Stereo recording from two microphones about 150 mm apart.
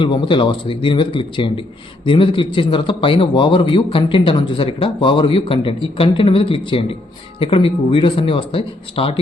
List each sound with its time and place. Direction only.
0.0 s a man's voice: 35° left (ahead or behind)